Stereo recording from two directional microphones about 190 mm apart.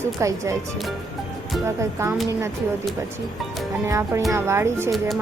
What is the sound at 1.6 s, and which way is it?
Speech, 15° right (ahead or behind).